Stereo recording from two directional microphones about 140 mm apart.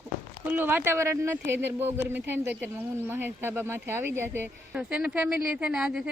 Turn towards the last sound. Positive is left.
turn(degrees=-5)  # may be behind; listen again after turning